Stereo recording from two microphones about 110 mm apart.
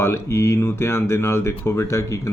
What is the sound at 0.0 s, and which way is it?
Speech, 25° left (ahead or behind).